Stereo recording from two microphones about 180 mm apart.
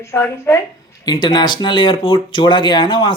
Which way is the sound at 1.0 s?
25° left (ahead or behind).